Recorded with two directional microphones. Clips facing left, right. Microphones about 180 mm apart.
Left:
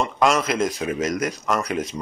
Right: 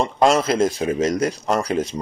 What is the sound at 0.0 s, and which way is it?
Speech, 30° right (ahead or behind).